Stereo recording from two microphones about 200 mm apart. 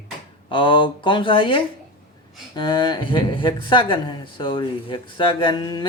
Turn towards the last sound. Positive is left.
turn(degrees=20)  # may be behind; listen again after turning